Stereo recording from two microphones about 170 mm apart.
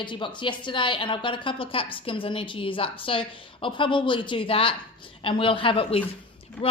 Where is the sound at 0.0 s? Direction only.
30° left (ahead or behind).